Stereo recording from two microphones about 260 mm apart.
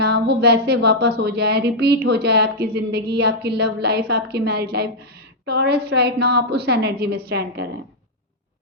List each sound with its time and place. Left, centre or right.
0.0 s speech: right